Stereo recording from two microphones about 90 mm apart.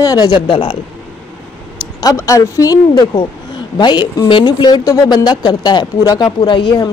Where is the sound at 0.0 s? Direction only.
45° left (ahead or behind).